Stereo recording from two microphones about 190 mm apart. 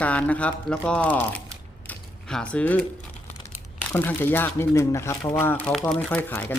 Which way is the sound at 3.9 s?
10° left (ahead or behind).